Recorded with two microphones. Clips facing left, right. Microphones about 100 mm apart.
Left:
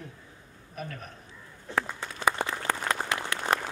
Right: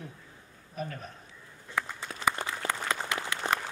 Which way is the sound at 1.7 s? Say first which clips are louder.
Left 3 dB; 65° left (ahead or behind).